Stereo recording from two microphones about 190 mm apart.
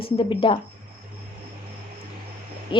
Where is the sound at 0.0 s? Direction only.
25° left (ahead or behind).